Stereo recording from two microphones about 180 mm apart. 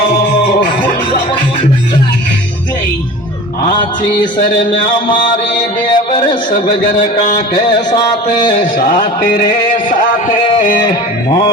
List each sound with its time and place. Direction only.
5.9 s music: 30° left (ahead or behind)
7.5 s music: 45° left (ahead or behind)
7.9 s music: 25° left (ahead or behind)
9.2 s music: 50° left (ahead or behind)
10.6 s music: 50° left (ahead or behind)